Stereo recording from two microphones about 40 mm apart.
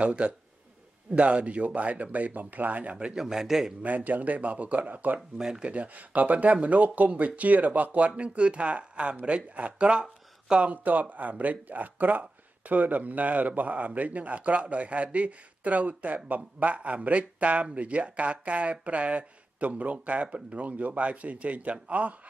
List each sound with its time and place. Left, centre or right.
0.0 s speech: right
3.2 s a man's voice: centre
3.8 s speech: right
8.2 s speech: right
10.7 s speech: right